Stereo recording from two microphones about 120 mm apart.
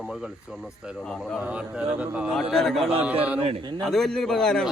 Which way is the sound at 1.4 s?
10° right (ahead or behind).